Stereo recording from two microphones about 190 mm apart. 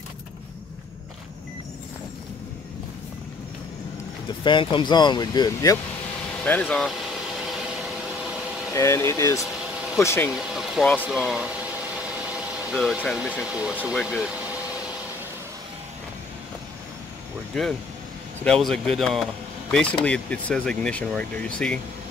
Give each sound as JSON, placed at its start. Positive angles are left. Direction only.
{"t": 4.3, "sound": "speech", "side_deg": 25}
{"t": 6.4, "sound": "a sound", "side_deg": 10}
{"t": 8.7, "sound": "speech", "side_deg": 15}
{"t": 10.3, "sound": "speech", "side_deg": 0}
{"t": 18.4, "sound": "speech", "side_deg": 0}